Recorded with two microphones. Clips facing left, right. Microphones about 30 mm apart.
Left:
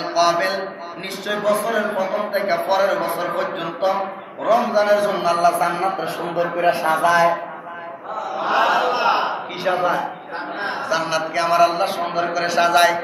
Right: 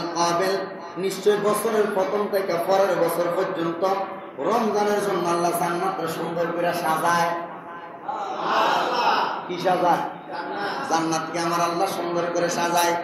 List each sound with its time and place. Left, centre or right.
0.0 s a man's voice: left
1.3 s a man's voice: left
1.6 s speech: centre
2.3 s speech: left
2.6 s a man's voice: centre; by 5.7 s left
5.7 s speech: left
8.4 s a sound: centre
8.9 s battle cry: centre
9.7 s a man's voice: centre; by 12.9 s left